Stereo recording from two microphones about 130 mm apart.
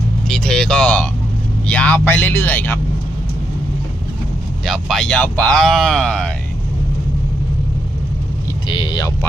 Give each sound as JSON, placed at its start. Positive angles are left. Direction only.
{"t": 0.3, "sound": "music", "side_deg": 5}
{"t": 1.6, "sound": "speech", "side_deg": 10}
{"t": 4.6, "sound": "speech", "side_deg": 0}
{"t": 8.6, "sound": "speech", "side_deg": 40}